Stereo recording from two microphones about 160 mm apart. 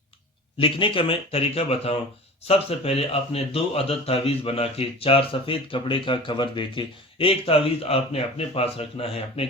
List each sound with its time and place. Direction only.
0.6 s speech: 35° left (ahead or behind)